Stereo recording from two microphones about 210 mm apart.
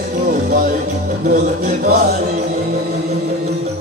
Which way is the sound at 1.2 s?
40° right (ahead or behind).